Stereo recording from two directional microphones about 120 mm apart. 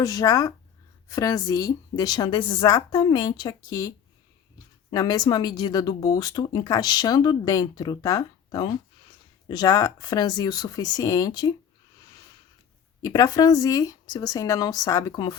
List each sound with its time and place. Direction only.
0.0 s speech: 30° left (ahead or behind)
2.6 s speech: 30° left (ahead or behind)
4.9 s speech: 35° left (ahead or behind)
13.0 s speech: 30° left (ahead or behind)